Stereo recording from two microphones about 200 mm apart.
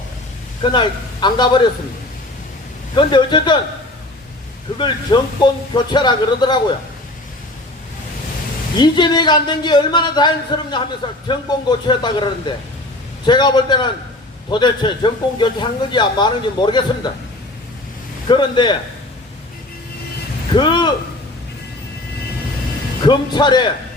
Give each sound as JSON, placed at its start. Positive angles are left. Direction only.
{"t": 0.6, "sound": "speech", "side_deg": 25}
{"t": 2.9, "sound": "speech", "side_deg": 20}
{"t": 4.8, "sound": "speech", "side_deg": 20}
{"t": 8.8, "sound": "speech", "side_deg": 20}
{"t": 11.9, "sound": "speech", "side_deg": 20}
{"t": 18.3, "sound": "speech", "side_deg": 20}
{"t": 20.6, "sound": "a sound", "side_deg": 20}
{"t": 23.0, "sound": "speech", "side_deg": 20}